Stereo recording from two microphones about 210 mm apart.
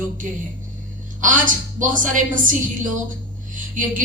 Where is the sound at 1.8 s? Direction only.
40° right (ahead or behind).